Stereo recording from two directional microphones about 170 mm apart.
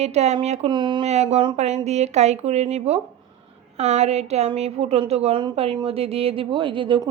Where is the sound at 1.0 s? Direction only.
40° right (ahead or behind).